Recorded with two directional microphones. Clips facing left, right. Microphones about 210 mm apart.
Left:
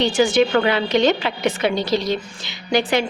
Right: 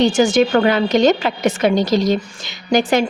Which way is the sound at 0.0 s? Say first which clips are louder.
Right 3 dB; 45° right (ahead or behind).